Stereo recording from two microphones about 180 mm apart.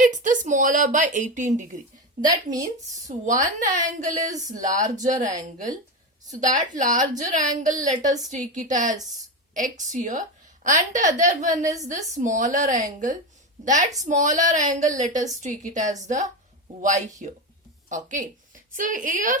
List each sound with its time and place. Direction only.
0.0 s a woman's voice: 45° right (ahead or behind)
4.3 s speech: 20° right (ahead or behind)
4.6 s a woman's voice: 45° right (ahead or behind)